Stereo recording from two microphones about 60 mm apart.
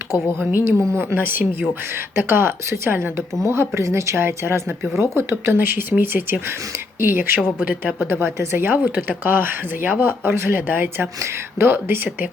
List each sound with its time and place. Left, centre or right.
0.5 s a woman's voice: right
4.2 s a woman's voice: right